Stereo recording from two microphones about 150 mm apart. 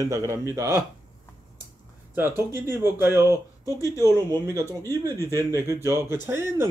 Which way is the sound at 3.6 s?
20° left (ahead or behind).